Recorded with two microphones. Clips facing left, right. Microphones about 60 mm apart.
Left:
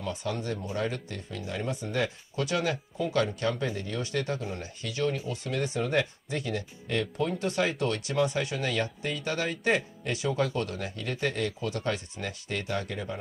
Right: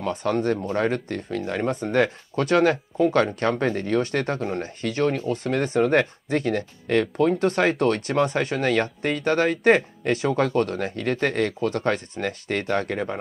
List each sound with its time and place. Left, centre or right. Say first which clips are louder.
0.0 s speech: right 9 dB; right